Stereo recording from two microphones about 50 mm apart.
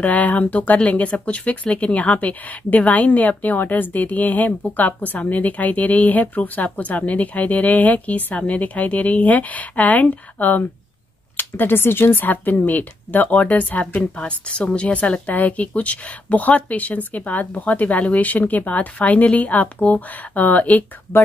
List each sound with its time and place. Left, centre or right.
0.0 s speech: left